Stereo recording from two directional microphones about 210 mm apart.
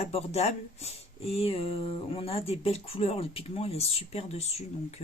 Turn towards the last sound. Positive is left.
turn(degrees=30)  # may be behind; listen again after turning